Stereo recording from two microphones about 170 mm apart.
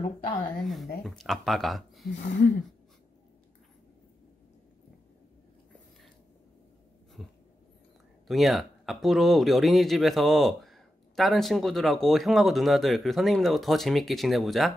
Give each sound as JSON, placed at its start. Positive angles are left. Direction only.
{"t": 0.5, "sound": "speech", "side_deg": 0}
{"t": 2.0, "sound": "speech", "side_deg": 90}
{"t": 7.2, "sound": "a sound", "side_deg": 0}
{"t": 8.3, "sound": "speech", "side_deg": 0}